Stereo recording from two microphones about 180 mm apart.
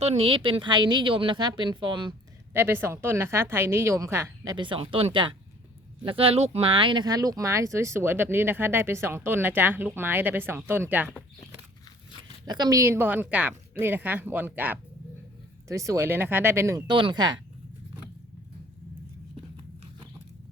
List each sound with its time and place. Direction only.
0.0 s speech: 35° right (ahead or behind)
2.5 s speech: 10° right (ahead or behind)
12.5 s speech: 20° right (ahead or behind)